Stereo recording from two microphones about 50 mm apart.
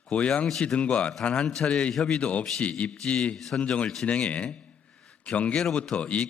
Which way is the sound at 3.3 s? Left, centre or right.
Centre.